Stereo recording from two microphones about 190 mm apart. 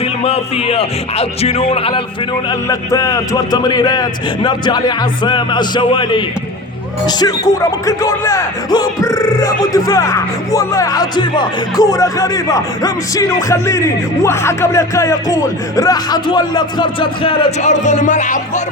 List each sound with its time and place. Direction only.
0.0 s speech: 30° left (ahead or behind)
2.5 s a man's voice: 15° left (ahead or behind)
17.6 s speech: 40° left (ahead or behind)